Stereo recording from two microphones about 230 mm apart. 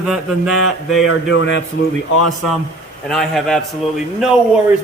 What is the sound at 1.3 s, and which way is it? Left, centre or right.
Speech, left.